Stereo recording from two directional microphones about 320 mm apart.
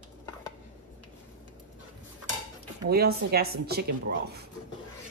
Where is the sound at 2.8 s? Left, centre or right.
Right.